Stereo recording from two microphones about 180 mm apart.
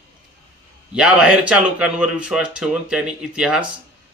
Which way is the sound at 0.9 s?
5° right (ahead or behind).